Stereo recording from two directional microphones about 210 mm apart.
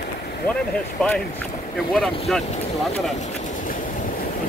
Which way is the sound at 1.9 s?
Centre (ahead or behind).